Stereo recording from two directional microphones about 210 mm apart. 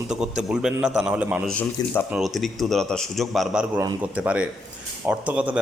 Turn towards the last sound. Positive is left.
turn(degrees=-5)  # may be behind; listen again after turning